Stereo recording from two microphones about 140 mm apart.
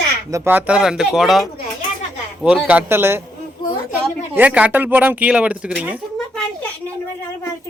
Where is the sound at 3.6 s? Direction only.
35° left (ahead or behind).